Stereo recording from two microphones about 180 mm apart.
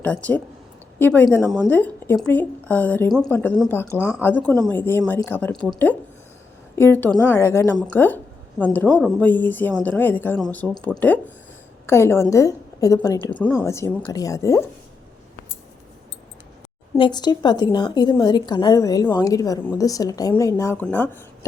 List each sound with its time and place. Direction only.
0.0 s a woman's voice: 10° left (ahead or behind)
3.9 s speech: 10° right (ahead or behind)
4.2 s a woman's voice: 10° left (ahead or behind)
17.0 s a woman's voice: 25° left (ahead or behind)